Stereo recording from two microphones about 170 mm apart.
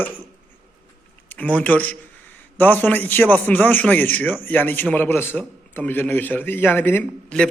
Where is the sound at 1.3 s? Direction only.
10° left (ahead or behind).